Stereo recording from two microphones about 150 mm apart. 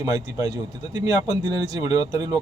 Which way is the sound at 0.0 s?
25° right (ahead or behind).